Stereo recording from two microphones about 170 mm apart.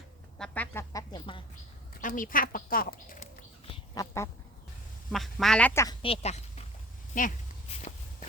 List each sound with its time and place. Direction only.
0.3 s speech: 5° left (ahead or behind)
2.0 s speech: 50° left (ahead or behind)
4.0 s duck: 20° left (ahead or behind)
5.1 s speech: centre (ahead or behind)
5.8 s speech: 25° left (ahead or behind)
7.1 s speech: 50° left (ahead or behind)
7.7 s walk: 40° left (ahead or behind)